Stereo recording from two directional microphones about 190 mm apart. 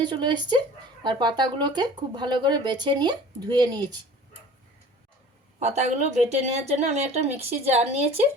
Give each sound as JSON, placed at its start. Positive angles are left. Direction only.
{"t": 0.0, "sound": "speech", "side_deg": -25}
{"t": 5.5, "sound": "speech", "side_deg": -35}